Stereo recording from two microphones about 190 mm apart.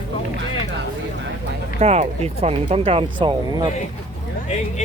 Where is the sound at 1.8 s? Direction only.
35° right (ahead or behind).